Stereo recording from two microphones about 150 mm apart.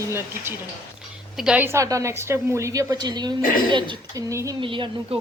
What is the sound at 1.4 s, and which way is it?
A woman's voice, 5° right (ahead or behind).